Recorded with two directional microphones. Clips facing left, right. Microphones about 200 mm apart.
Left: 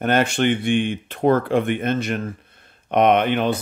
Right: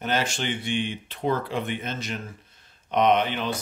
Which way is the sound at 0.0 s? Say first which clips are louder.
Left 8 dB; 55° left (ahead or behind).